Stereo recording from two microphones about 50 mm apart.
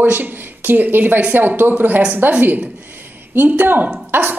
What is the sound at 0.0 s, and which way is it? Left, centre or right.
A woman's voice, right.